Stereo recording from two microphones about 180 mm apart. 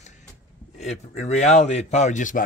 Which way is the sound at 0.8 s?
40° left (ahead or behind).